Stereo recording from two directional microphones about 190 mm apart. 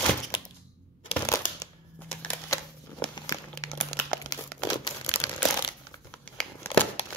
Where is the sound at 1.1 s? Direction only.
15° left (ahead or behind).